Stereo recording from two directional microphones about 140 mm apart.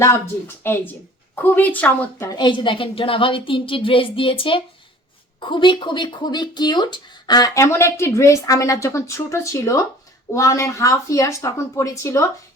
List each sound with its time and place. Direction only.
0.0 s a woman's voice: 20° left (ahead or behind)
2.4 s speech: 35° left (ahead or behind); by 12.3 s 20° left (ahead or behind)